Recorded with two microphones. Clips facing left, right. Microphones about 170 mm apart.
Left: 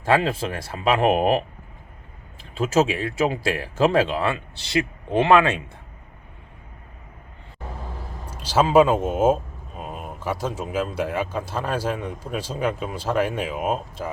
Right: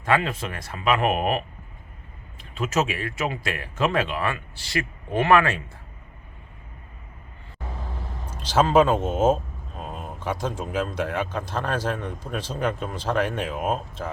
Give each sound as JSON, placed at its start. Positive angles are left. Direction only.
{"t": 0.0, "sound": "speech", "side_deg": 30}
{"t": 2.4, "sound": "speech", "side_deg": 30}
{"t": 8.3, "sound": "a man's voice", "side_deg": 10}